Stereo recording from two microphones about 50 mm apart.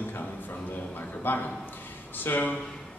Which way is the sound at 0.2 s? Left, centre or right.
Left.